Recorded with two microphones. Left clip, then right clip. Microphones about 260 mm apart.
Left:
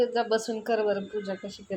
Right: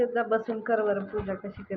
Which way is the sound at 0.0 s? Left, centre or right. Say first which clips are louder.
Even; left.